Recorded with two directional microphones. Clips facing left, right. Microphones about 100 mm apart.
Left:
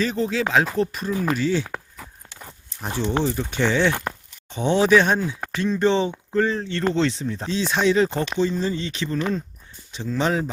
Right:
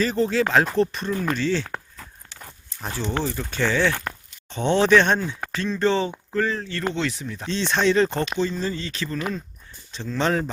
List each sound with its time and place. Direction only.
0.0 s speech: centre (ahead or behind)
2.0 s livestock: 5° left (ahead or behind)
2.8 s speech: 15° left (ahead or behind)
7.4 s speech: 10° left (ahead or behind)